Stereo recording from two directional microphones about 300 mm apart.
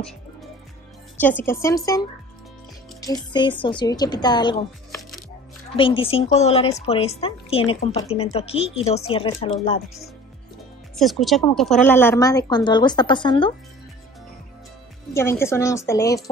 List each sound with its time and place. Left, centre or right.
1.2 s a woman's voice: centre
11.0 s a woman's voice: centre
15.1 s a woman's voice: centre